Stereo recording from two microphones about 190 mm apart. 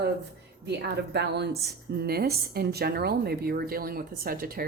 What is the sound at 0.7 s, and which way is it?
A woman's voice, 60° right (ahead or behind).